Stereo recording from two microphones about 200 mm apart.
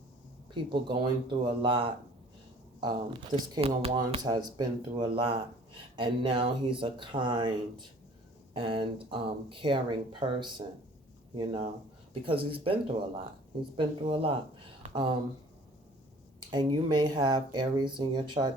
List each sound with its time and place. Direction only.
0.5 s speech: 25° right (ahead or behind)
16.5 s speech: 25° right (ahead or behind)